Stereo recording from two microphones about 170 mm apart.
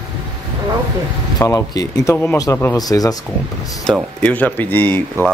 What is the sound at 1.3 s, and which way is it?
Speech, 20° left (ahead or behind).